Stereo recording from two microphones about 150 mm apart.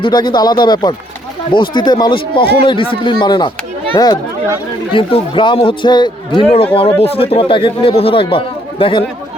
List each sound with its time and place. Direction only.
0.0 s speech: 30° left (ahead or behind)